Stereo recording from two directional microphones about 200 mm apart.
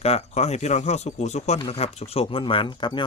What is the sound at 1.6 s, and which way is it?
Wind chime, 25° left (ahead or behind).